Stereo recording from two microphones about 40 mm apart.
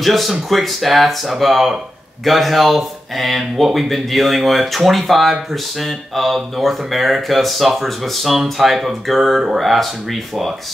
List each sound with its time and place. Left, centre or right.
0.0 s speech: centre